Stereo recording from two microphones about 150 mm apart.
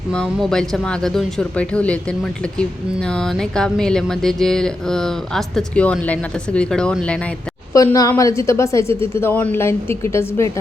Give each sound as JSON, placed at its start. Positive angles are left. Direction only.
{"t": 0.1, "sound": "speech", "side_deg": 5}
{"t": 7.7, "sound": "a woman's voice", "side_deg": 20}